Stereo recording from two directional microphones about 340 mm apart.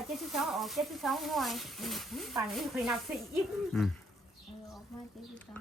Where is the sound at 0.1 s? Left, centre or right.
Centre.